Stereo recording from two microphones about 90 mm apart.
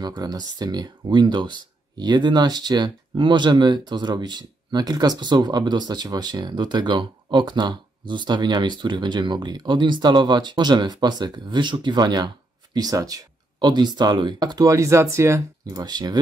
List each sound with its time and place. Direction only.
0.0 s speech: 50° right (ahead or behind); by 15.4 s 30° right (ahead or behind)
15.6 s speech: 50° right (ahead or behind)